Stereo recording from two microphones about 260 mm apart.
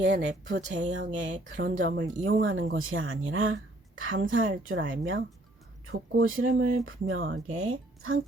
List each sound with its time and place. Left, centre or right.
0.0 s speech: right